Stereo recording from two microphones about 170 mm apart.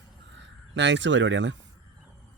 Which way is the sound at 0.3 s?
90° right.